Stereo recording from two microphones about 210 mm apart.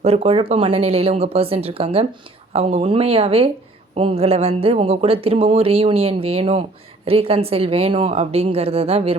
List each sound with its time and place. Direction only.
0.0 s speech: 30° right (ahead or behind)